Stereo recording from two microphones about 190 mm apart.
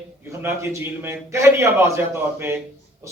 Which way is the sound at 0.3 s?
15° right (ahead or behind).